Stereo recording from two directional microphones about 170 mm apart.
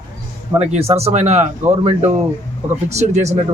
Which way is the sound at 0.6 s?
40° right (ahead or behind).